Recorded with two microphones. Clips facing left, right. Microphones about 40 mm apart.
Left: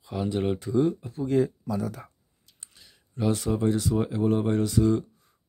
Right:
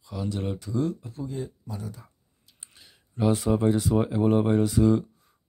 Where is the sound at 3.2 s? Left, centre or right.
Centre.